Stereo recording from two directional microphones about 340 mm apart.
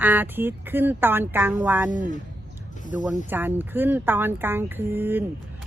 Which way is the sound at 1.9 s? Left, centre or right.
Right.